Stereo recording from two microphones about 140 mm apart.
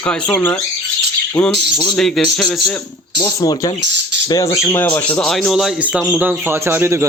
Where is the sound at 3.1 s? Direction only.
30° left (ahead or behind); by 7.0 s 20° right (ahead or behind).